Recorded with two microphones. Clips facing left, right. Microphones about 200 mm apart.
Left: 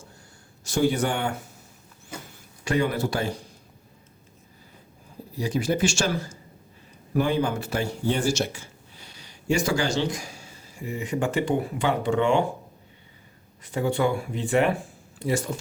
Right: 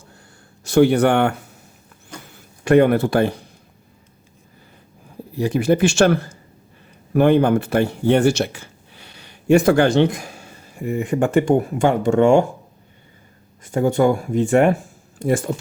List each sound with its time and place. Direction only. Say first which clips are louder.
0.6 s speech: right 9 dB; 65° right (ahead or behind)
2.1 s a sound: right 1 dB; 5° left (ahead or behind)
2.6 s speech: right 11 dB; 60° right (ahead or behind)
5.3 s speech: right 8 dB; 60° right (ahead or behind)
13.6 s speech: right 7 dB; 45° right (ahead or behind)